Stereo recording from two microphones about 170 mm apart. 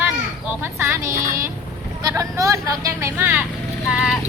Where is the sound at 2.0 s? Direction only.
20° right (ahead or behind); by 4.2 s 5° right (ahead or behind).